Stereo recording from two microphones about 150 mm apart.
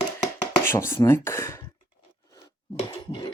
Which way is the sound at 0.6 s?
15° left (ahead or behind).